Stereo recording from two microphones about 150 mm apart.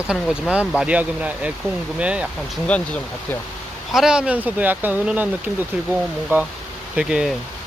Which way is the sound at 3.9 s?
5° right (ahead or behind).